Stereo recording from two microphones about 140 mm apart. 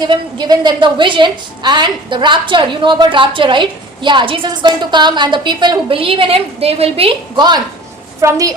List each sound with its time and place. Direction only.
0.0 s a woman's voice: 30° right (ahead or behind)